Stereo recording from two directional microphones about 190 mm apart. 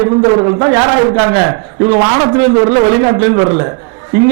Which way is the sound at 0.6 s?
25° right (ahead or behind).